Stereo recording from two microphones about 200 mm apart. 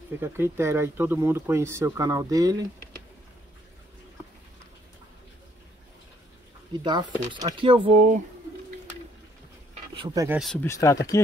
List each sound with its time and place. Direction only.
0.2 s speech: 10° right (ahead or behind)
6.8 s speech: 20° right (ahead or behind)
9.9 s speech: 20° right (ahead or behind)
10.4 s speech: 5° left (ahead or behind)
10.7 s speech: 15° left (ahead or behind)